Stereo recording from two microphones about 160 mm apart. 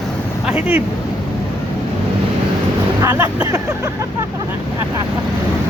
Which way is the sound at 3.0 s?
15° right (ahead or behind).